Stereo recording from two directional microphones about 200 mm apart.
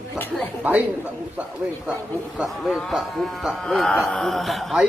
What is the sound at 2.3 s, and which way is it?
Speech, centre (ahead or behind).